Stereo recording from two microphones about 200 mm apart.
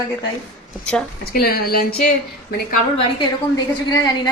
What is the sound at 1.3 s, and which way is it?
Speech, 50° left (ahead or behind).